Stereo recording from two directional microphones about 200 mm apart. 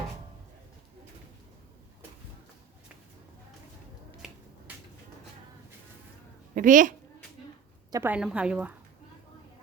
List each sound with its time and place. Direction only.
4.2 s finger snapping: centre (ahead or behind)
6.5 s a woman's voice: 40° right (ahead or behind)
7.9 s a woman's voice: 10° right (ahead or behind)